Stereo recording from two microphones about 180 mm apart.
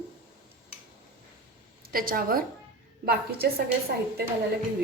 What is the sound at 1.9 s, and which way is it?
A woman's voice, 55° right (ahead or behind).